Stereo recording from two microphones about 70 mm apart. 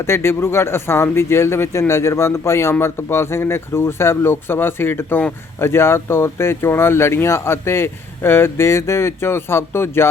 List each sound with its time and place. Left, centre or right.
0.0 s speech: left